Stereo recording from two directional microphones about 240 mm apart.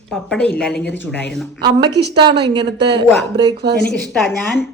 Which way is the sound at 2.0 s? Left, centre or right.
Right.